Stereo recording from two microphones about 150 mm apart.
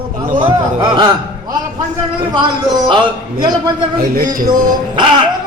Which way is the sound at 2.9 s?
30° right (ahead or behind).